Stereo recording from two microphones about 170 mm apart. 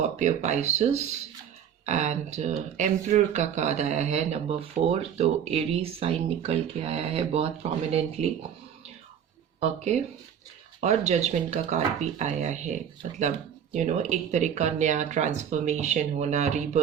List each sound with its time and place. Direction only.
0.2 s speech: 45° right (ahead or behind)
1.9 s speech: 45° right (ahead or behind)
9.6 s speech: 40° right (ahead or behind)